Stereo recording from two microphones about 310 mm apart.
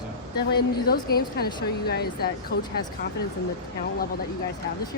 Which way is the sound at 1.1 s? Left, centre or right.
Left.